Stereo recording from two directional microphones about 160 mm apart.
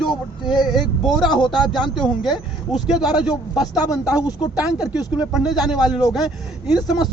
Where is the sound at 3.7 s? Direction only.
20° left (ahead or behind).